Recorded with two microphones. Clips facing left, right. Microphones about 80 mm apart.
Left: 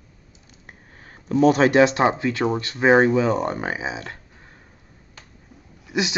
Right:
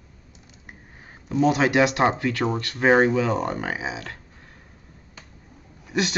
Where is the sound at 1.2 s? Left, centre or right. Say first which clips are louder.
Left 4 dB; left.